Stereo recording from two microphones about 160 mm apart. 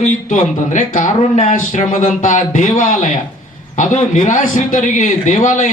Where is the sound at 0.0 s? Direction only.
55° left (ahead or behind).